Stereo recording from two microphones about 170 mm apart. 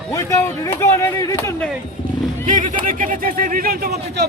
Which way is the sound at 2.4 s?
50° right (ahead or behind).